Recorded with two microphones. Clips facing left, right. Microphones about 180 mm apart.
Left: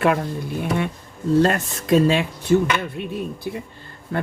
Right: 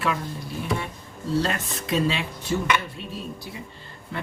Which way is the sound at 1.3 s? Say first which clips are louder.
Left 8 dB; 50° left (ahead or behind).